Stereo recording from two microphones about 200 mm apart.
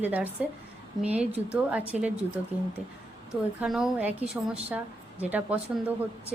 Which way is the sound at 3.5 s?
Centre (ahead or behind).